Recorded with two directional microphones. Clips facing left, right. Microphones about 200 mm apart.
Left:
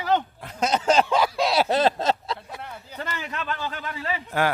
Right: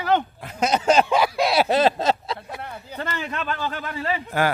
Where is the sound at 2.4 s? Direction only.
60° right (ahead or behind).